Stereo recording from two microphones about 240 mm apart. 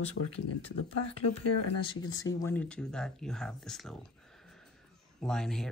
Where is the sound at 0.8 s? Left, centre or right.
Left.